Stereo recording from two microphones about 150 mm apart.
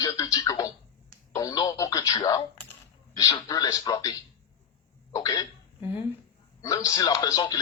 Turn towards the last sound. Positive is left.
turn(degrees=25)  # may be behind; listen again after turning